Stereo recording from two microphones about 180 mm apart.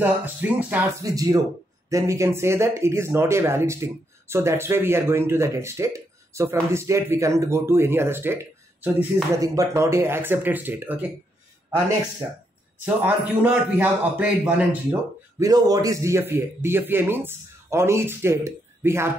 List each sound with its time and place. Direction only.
0.0 s a man's voice: 10° right (ahead or behind)
1.0 s a man's voice: 20° right (ahead or behind)
12.8 s a man's voice: 10° right (ahead or behind)
14.9 s a man's voice: 20° right (ahead or behind)